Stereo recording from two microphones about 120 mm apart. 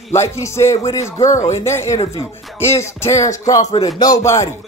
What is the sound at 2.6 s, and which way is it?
Speech, 20° left (ahead or behind).